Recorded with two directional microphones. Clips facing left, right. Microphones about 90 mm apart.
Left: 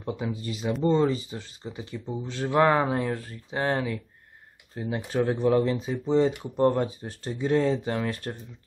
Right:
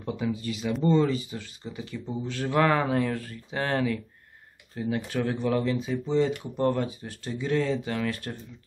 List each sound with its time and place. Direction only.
0.0 s speech: 25° left (ahead or behind)